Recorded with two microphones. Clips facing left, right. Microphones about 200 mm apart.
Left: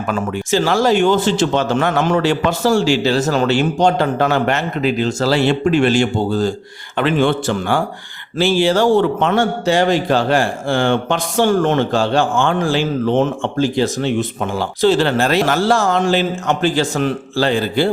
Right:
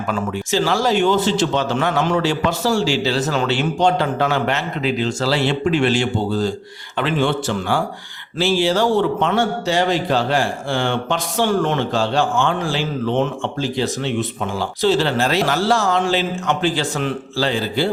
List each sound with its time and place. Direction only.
0.1 s speech: 50° left (ahead or behind)